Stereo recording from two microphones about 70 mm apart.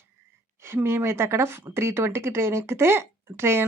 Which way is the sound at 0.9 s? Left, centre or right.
Right.